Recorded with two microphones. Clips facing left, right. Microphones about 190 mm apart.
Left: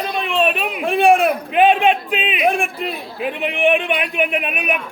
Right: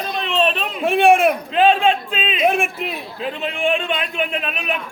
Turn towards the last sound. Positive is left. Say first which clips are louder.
# left 3 dB
turn(degrees=15)  # may be behind; listen again after turning